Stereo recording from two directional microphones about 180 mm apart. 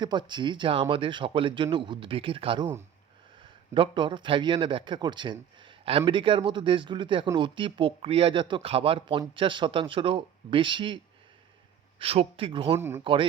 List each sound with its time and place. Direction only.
0.0 s a man's voice: 25° right (ahead or behind)